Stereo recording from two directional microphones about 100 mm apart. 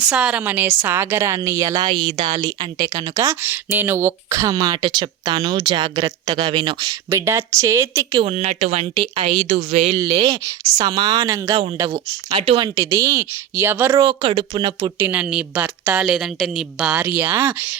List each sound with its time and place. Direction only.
0.1 s a woman's voice: 10° right (ahead or behind); by 3.3 s 35° right (ahead or behind)
3.4 s speech: 20° right (ahead or behind); by 6.9 s 55° right (ahead or behind)
7.1 s speech: 30° right (ahead or behind)
8.3 s speech: 90° right
9.0 s speech: 60° right (ahead or behind); by 10.0 s 90° right
10.8 s speech: 45° right (ahead or behind)
11.9 s speech: 55° right (ahead or behind)
12.5 s speech: 40° right (ahead or behind); by 14.0 s 20° right (ahead or behind)
14.0 s speech: 55° right (ahead or behind)
14.9 s speech: 25° right (ahead or behind)
15.2 s speech: 10° right (ahead or behind)
16.0 s a woman's voice: centre (ahead or behind)
17.0 s speech: 20° right (ahead or behind)